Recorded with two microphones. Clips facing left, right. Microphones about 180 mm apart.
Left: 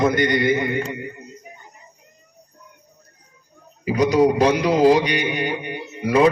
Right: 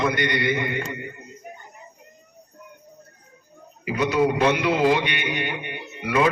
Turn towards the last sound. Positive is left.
turn(degrees=35)  # may be behind; listen again after turning